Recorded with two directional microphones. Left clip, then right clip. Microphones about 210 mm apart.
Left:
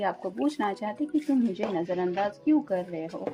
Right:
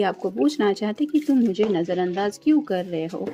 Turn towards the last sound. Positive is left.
turn(degrees=-45)  # may be behind; listen again after turning